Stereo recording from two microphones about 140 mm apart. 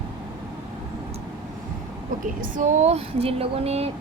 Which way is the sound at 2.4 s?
70° right (ahead or behind).